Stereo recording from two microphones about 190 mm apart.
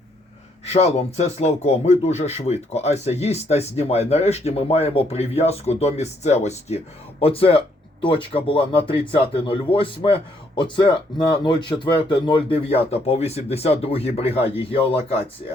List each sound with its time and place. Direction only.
0.6 s speech: 35° left (ahead or behind)